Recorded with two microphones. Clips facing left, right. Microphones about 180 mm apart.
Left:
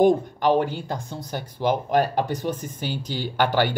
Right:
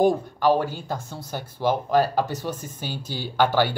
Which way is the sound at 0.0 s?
20° left (ahead or behind).